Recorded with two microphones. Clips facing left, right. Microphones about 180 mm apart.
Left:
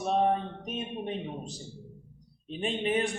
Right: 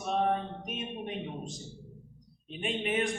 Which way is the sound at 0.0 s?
35° left (ahead or behind).